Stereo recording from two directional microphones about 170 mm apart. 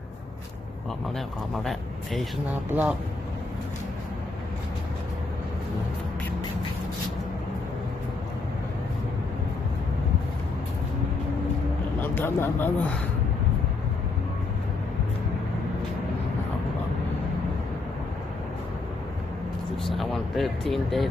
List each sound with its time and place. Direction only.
2.5 s speech: 10° right (ahead or behind)
12.0 s speech: 15° left (ahead or behind)
19.8 s speech: centre (ahead or behind)